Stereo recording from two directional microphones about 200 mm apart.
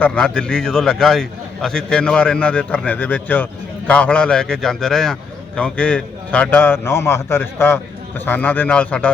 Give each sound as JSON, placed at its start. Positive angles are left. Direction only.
{"t": 0.0, "sound": "a man's voice", "side_deg": 5}